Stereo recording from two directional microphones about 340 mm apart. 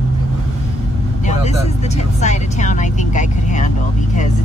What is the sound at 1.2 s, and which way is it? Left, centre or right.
Vehicle, centre.